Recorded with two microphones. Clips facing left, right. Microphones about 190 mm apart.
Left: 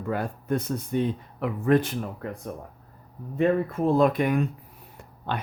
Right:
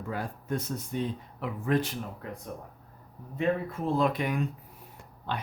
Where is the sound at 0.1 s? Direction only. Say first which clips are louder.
Left 6 dB; 60° left (ahead or behind).